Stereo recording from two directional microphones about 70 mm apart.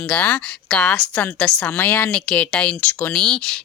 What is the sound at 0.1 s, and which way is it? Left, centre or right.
Speech, centre.